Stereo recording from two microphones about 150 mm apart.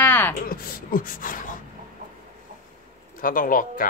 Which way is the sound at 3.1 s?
70° left (ahead or behind).